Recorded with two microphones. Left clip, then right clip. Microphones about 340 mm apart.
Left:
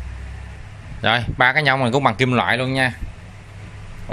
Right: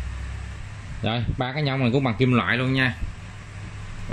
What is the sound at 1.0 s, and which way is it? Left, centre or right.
Speech, centre.